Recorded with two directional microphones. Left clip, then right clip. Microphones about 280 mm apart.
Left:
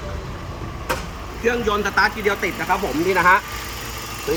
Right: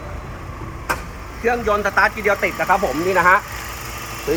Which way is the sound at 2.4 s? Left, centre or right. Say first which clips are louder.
Right 4 dB; right.